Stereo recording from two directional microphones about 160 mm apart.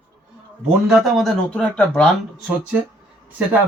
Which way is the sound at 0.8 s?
Centre (ahead or behind).